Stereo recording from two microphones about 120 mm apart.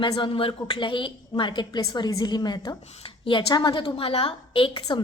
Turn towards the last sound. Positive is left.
turn(degrees=45)  # may be behind; listen again after turning